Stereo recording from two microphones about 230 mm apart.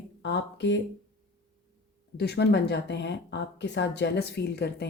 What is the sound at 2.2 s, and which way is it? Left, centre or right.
A woman's voice, left.